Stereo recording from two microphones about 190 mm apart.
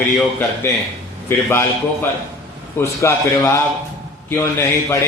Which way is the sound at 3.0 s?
15° left (ahead or behind).